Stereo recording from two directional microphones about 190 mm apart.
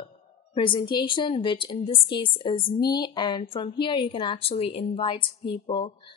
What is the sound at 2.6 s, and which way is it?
Speech, 50° left (ahead or behind).